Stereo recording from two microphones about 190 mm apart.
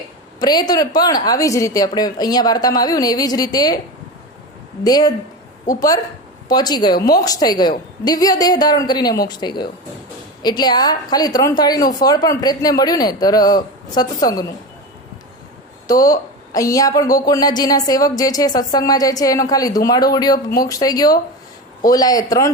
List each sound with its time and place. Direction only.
0.3 s a woman's voice: 20° left (ahead or behind)
4.8 s a woman's voice: 20° left (ahead or behind)
15.9 s a woman's voice: 20° left (ahead or behind)